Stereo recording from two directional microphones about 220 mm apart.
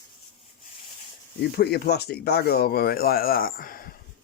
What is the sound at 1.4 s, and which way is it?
Speech, 45° left (ahead or behind).